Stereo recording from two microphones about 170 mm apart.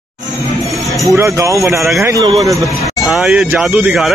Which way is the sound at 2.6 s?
20° left (ahead or behind).